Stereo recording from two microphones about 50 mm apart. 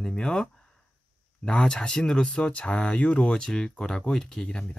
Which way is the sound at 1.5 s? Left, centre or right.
Left.